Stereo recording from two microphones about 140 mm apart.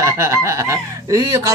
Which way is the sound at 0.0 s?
20° right (ahead or behind).